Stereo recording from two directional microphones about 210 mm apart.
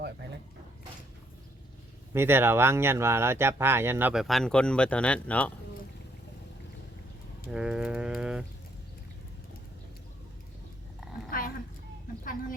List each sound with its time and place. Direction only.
2.1 s speech: 10° right (ahead or behind); by 5.5 s 5° left (ahead or behind)
7.5 s livestock: 5° right (ahead or behind)
11.3 s a sound: 40° left (ahead or behind)
12.2 s chicken: 40° left (ahead or behind)